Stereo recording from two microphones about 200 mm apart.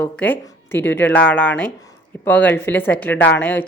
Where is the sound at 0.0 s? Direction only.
10° left (ahead or behind).